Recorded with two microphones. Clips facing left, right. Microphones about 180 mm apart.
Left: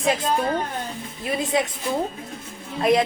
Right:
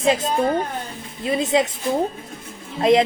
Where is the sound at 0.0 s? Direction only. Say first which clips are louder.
Right 3 dB; 25° right (ahead or behind).